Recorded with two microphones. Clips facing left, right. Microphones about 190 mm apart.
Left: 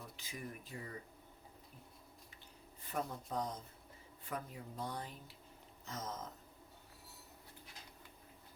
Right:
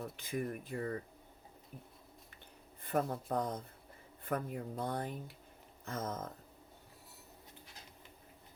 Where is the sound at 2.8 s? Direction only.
55° right (ahead or behind).